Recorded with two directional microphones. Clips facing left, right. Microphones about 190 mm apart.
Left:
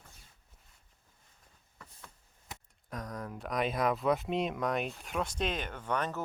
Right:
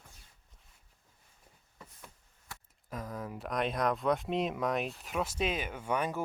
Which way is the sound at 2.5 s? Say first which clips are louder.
Left 2 dB; 20° left (ahead or behind).